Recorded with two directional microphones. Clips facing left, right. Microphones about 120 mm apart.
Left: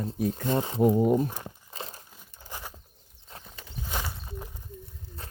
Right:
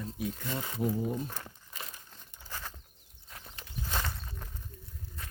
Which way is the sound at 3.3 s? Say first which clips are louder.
Left 4 dB; 30° left (ahead or behind).